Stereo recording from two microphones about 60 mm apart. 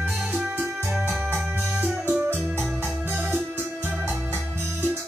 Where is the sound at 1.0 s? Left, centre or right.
Right.